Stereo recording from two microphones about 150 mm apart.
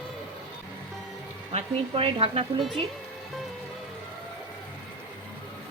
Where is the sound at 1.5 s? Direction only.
35° right (ahead or behind).